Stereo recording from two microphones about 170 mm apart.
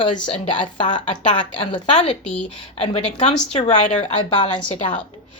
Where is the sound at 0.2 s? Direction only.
30° left (ahead or behind).